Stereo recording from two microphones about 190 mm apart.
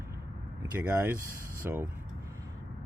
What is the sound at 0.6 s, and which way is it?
Speech, 10° right (ahead or behind).